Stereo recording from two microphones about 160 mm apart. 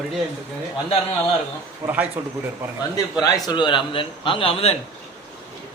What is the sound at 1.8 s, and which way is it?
Speech, 10° right (ahead or behind).